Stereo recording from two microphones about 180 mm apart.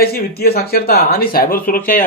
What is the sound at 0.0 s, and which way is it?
A man's voice, 60° left (ahead or behind).